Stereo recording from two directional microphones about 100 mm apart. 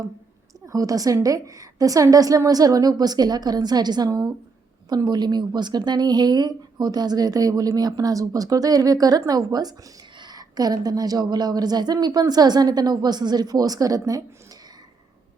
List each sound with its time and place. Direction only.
0.7 s a woman's voice: 35° right (ahead or behind)